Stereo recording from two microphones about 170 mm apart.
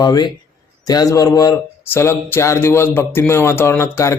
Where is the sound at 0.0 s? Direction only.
25° left (ahead or behind).